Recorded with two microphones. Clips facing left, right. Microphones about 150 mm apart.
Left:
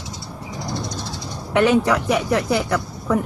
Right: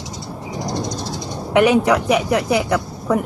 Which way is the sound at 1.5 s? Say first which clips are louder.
Right 2 dB; 20° right (ahead or behind).